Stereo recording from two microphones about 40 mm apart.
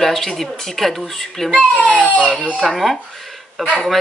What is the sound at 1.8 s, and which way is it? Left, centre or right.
Speech, left.